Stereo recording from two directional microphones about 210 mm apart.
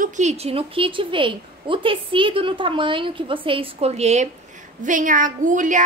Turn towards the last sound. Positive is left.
turn(degrees=-35)  # may be behind; listen again after turning